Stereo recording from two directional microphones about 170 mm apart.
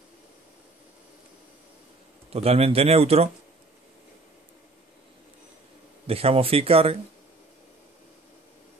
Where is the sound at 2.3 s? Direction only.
35° right (ahead or behind).